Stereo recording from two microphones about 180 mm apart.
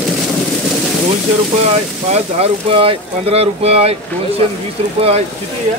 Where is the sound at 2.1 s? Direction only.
35° right (ahead or behind).